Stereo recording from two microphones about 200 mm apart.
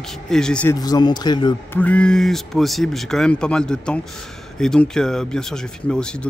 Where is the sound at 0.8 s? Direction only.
20° left (ahead or behind).